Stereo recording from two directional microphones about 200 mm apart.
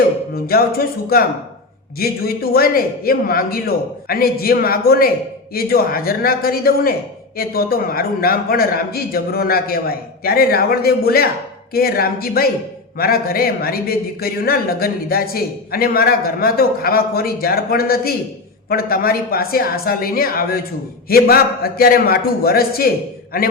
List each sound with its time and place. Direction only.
0.5 s a man's voice: 50° left (ahead or behind)
2.0 s a man's voice: 50° left (ahead or behind)